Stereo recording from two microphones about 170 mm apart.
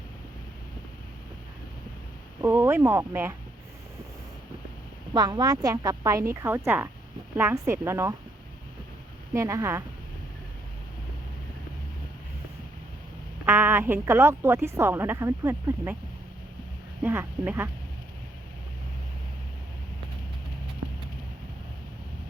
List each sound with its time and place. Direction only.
2.4 s a woman's voice: 15° right (ahead or behind)
5.1 s a woman's voice: 25° right (ahead or behind)
9.3 s a woman's voice: 20° right (ahead or behind)
13.4 s a woman's voice: 10° right (ahead or behind)
17.0 s a woman's voice: 10° right (ahead or behind)